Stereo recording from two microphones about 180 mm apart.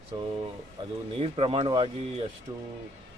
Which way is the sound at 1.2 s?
30° right (ahead or behind).